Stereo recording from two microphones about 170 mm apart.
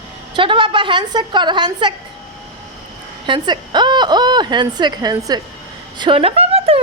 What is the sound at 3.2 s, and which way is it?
A woman's voice, 30° right (ahead or behind).